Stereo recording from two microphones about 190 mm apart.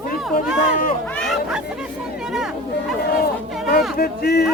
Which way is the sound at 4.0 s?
55° left (ahead or behind).